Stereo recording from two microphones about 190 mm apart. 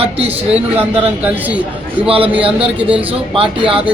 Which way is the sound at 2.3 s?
30° right (ahead or behind).